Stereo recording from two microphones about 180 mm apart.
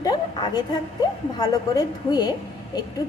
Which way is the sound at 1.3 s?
20° left (ahead or behind).